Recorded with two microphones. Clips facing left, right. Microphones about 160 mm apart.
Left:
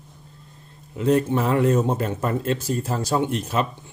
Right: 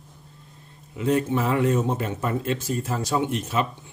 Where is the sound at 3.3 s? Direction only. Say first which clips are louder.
Left 1 dB; 40° left (ahead or behind).